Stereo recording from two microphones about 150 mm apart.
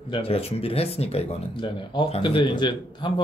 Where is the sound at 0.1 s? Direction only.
40° left (ahead or behind).